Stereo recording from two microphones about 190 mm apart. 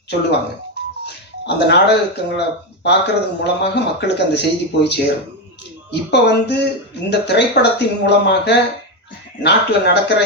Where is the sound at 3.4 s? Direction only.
60° left (ahead or behind).